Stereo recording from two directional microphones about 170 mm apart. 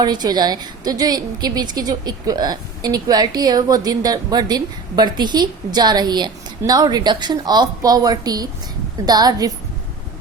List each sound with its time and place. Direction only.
0.0 s a woman's voice: 25° right (ahead or behind)